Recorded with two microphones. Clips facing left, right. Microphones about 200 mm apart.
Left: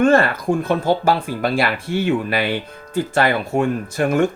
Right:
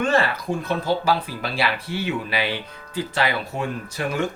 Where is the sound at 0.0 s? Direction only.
50° left (ahead or behind).